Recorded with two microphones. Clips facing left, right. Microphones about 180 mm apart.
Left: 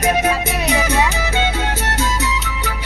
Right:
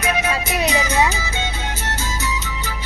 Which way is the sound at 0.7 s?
60° left (ahead or behind).